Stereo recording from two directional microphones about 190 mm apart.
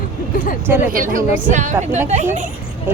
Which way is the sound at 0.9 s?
45° right (ahead or behind).